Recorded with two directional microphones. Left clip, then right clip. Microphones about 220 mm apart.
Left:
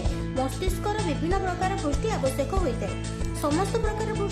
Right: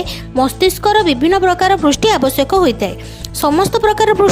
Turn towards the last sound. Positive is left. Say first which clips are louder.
# right 19 dB
turn(degrees=-35)  # may be behind; listen again after turning